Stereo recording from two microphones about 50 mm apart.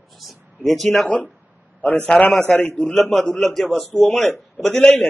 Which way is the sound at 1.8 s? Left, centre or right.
Left.